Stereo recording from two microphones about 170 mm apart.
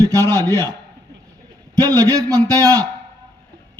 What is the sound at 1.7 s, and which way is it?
A man's voice, 20° right (ahead or behind).